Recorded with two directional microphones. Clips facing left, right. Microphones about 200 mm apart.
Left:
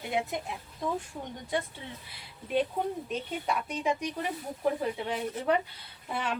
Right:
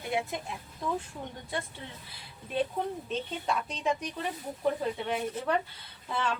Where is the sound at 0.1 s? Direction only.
20° left (ahead or behind).